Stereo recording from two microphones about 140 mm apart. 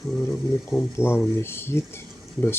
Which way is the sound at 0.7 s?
15° left (ahead or behind).